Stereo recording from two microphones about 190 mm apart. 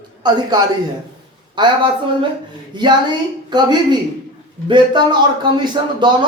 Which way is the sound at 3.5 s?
20° right (ahead or behind).